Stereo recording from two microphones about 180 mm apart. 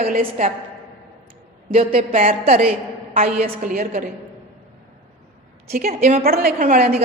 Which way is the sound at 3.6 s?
55° right (ahead or behind).